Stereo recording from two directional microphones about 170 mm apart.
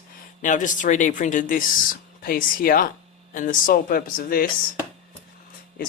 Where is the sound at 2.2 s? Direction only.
60° left (ahead or behind).